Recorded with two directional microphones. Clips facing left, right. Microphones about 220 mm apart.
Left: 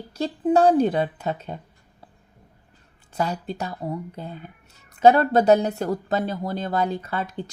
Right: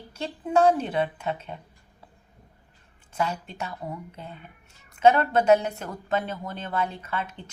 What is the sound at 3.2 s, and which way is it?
Speech, 35° left (ahead or behind).